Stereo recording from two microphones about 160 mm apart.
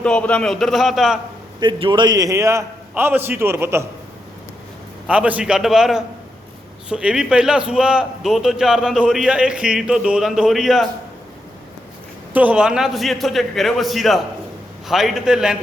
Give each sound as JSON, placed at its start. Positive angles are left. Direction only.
{"t": 0.0, "sound": "a man's voice", "side_deg": 5}
{"t": 1.5, "sound": "a man's voice", "side_deg": -30}
{"t": 5.0, "sound": "a man's voice", "side_deg": -10}
{"t": 12.3, "sound": "a man's voice", "side_deg": -10}